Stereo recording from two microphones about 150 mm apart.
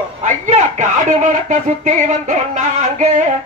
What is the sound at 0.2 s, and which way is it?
Speech, 55° right (ahead or behind).